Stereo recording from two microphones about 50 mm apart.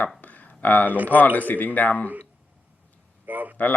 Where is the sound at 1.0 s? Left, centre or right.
Left.